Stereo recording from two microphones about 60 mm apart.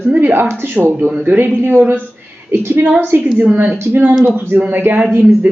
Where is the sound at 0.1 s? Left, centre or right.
Right.